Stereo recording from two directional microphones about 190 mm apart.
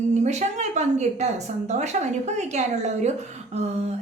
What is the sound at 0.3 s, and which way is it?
Speech, 40° right (ahead or behind).